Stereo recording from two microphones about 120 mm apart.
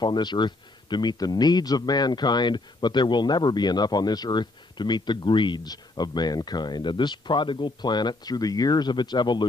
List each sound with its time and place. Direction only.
0.0 s speech: 40° left (ahead or behind)